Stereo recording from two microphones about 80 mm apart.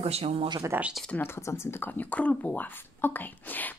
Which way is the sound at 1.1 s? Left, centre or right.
Left.